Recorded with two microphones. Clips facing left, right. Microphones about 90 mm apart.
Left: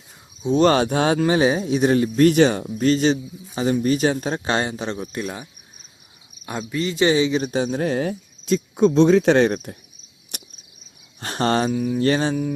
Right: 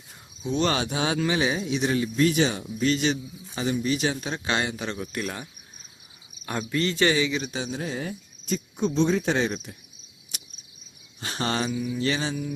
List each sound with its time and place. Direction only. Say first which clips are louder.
0.4 s speech: left 9 dB; 40° left (ahead or behind)
5.2 s cricket: left 3 dB; 15° left (ahead or behind)
6.4 s speech: left 1 dB; 10° left (ahead or behind)
6.9 s speech: left 7 dB; 20° left (ahead or behind)
7.3 s speech: left 8 dB; 45° left (ahead or behind)
10.3 s cricket: left 5 dB; 55° left (ahead or behind)
11.2 s speech: left 7 dB; 50° left (ahead or behind)